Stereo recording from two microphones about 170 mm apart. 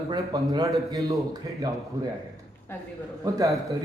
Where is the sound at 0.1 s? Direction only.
25° right (ahead or behind).